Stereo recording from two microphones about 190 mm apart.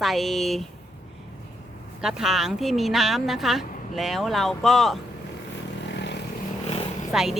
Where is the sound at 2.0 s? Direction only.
Centre (ahead or behind).